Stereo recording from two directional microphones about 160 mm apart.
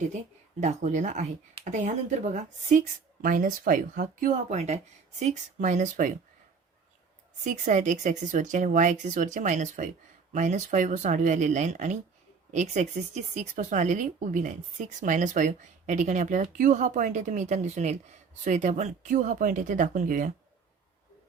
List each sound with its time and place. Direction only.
0.6 s speech: 45° right (ahead or behind)
7.4 s speech: 50° right (ahead or behind)